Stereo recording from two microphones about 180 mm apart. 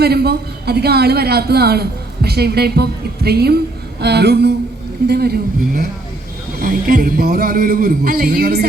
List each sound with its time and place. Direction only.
0.0 s a woman's voice: 60° right (ahead or behind)